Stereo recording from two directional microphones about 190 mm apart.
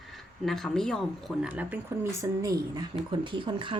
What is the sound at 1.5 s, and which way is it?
Speech, 10° right (ahead or behind).